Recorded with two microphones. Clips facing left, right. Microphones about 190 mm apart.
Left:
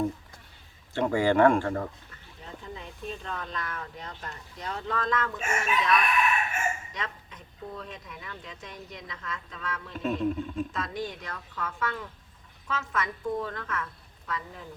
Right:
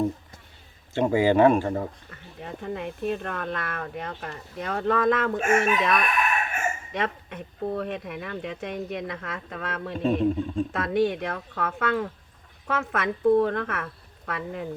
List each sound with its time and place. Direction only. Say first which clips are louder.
1.2 s speech: right 2 dB; 15° right (ahead or behind)
2.0 s speech: right 7 dB; 65° right (ahead or behind)
6.9 s speech: right 9 dB; 60° right (ahead or behind)
10.0 s speech: right 5 dB; 30° right (ahead or behind)
10.7 s speech: right 10 dB; 65° right (ahead or behind)